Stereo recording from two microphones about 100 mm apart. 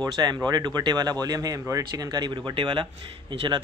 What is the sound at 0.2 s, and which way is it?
Speech, 40° right (ahead or behind).